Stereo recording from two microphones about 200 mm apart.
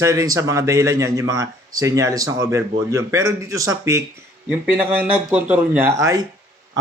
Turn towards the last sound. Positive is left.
turn(degrees=-15)  # may be behind; listen again after turning